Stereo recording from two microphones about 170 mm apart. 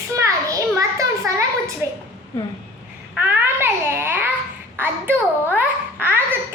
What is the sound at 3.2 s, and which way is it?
A child's voice, 10° right (ahead or behind).